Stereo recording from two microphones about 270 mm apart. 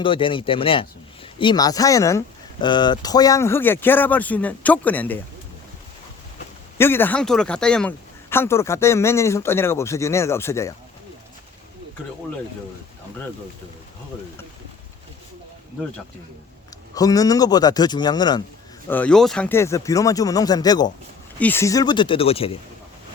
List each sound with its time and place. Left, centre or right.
0.0 s speech: centre
6.7 s speech: centre
16.9 s speech: centre